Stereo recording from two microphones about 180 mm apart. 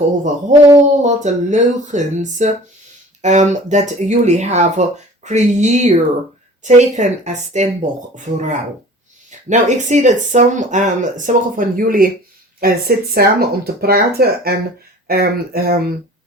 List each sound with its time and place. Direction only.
0.8 s speech: 40° right (ahead or behind); by 15.9 s 55° right (ahead or behind)